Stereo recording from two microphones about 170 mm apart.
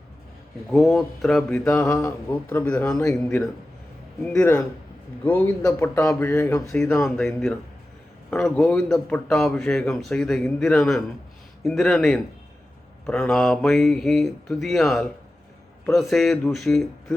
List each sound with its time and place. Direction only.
0.7 s a man's voice: centre (ahead or behind)
4.3 s a man's voice: 15° left (ahead or behind)
6.7 s a man's voice: 5° left (ahead or behind)